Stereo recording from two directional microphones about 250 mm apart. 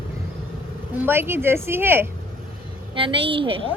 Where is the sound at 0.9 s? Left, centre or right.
Centre.